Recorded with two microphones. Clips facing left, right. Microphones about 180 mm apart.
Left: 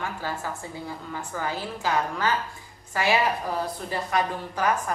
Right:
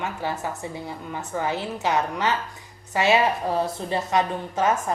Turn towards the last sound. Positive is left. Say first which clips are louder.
# right 3 dB
turn(degrees=-25)  # may be behind; listen again after turning